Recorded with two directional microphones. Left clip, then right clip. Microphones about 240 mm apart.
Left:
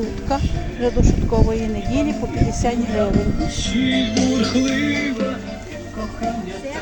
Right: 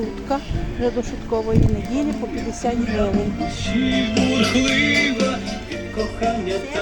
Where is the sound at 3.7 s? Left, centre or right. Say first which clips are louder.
Left 1 dB; right.